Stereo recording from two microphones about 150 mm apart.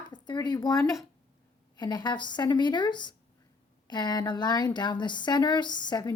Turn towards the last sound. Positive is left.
turn(degrees=30)  # may be behind; listen again after turning